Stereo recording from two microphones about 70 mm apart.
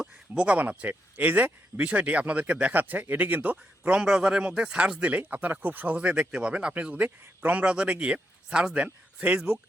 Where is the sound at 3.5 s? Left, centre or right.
Centre.